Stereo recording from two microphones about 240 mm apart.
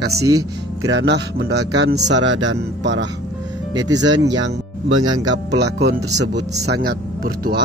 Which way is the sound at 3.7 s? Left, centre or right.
Centre.